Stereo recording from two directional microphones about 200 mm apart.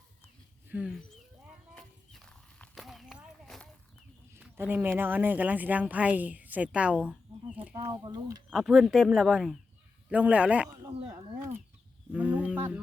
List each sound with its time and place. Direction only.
0.7 s speech: 5° right (ahead or behind)
1.7 s a sound: 5° left (ahead or behind)
4.4 s speech: 10° right (ahead or behind)
7.9 s speech: 20° right (ahead or behind)
8.4 s speech: centre (ahead or behind)